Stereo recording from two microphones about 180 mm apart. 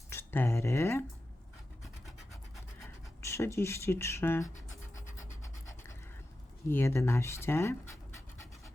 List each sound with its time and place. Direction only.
0.1 s speech: 15° left (ahead or behind)
1.8 s scratch: centre (ahead or behind)
3.2 s speech: 15° left (ahead or behind)
6.7 s speech: 15° left (ahead or behind)